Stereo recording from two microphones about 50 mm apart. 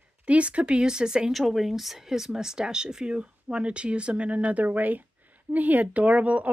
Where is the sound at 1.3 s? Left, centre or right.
Centre.